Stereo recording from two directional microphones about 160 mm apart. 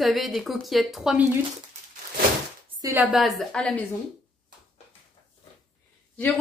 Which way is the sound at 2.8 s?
15° right (ahead or behind).